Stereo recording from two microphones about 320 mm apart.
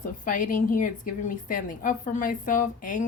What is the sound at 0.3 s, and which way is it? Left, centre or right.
A woman's voice, left.